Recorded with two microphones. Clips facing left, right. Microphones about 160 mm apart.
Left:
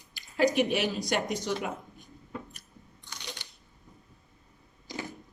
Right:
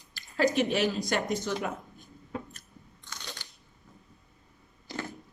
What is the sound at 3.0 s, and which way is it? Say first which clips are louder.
Biting: left 1 dB; 15° left (ahead or behind).